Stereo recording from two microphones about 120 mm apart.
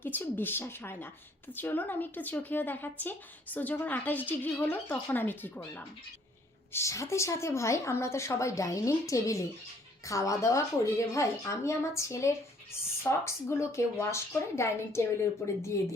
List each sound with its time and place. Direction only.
0.0 s a woman's voice: 15° left (ahead or behind)
6.7 s a woman's voice: 25° left (ahead or behind)